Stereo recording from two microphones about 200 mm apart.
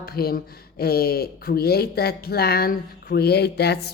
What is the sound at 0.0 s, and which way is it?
Speech, 50° left (ahead or behind).